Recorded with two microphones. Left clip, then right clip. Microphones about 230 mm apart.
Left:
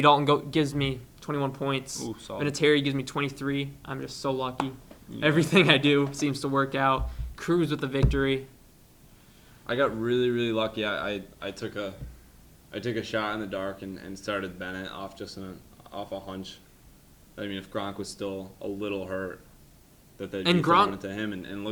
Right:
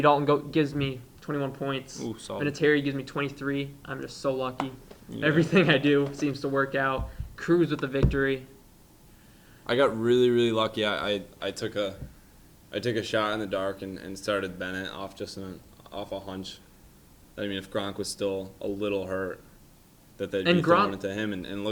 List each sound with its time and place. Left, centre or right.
0.0 s speech: left
2.0 s speech: centre
2.4 s speech: left
5.2 s speech: left
9.6 s speech: right
20.4 s speech: left
20.9 s speech: right